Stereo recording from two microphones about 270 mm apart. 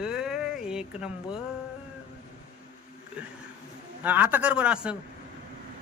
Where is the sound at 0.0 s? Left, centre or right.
Centre.